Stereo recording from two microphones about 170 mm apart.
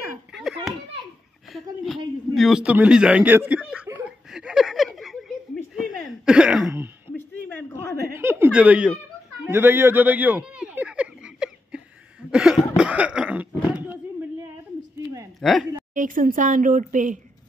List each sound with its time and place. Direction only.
0.3 s children playing: 5° right (ahead or behind)
2.3 s chuckle: centre (ahead or behind)
5.8 s throat clearing: 5° right (ahead or behind)
8.2 s speech: 15° right (ahead or behind)
9.5 s a sound: 15° right (ahead or behind)
12.3 s cough: 5° right (ahead or behind)
15.4 s cough: centre (ahead or behind)
15.9 s speech: 50° right (ahead or behind)